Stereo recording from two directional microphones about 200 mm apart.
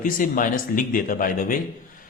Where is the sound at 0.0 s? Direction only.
40° left (ahead or behind).